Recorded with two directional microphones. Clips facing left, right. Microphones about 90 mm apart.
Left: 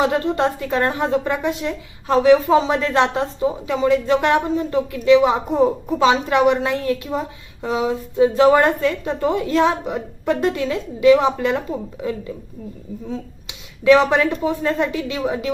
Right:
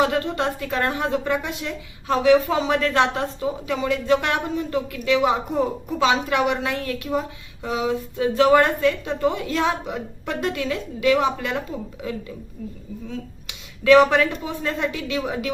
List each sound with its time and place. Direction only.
0.0 s a woman's voice: 30° left (ahead or behind)
13.1 s a woman's voice: 20° left (ahead or behind)